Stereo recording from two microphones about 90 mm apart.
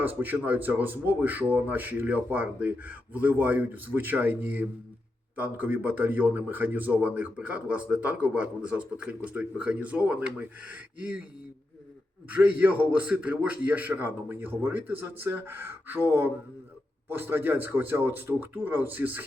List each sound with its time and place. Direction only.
0.0 s a man's voice: 20° right (ahead or behind)
12.3 s a man's voice: 20° right (ahead or behind)